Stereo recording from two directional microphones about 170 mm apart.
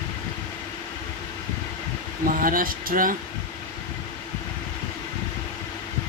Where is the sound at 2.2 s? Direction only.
55° right (ahead or behind).